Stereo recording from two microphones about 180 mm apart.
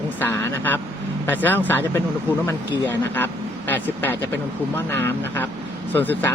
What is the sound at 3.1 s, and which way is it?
Speech, 10° left (ahead or behind).